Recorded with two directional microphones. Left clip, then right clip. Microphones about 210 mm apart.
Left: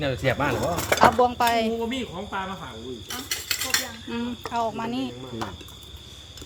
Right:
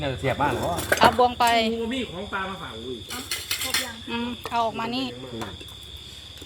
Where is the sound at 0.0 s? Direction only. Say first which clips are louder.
Even; 65° left (ahead or behind).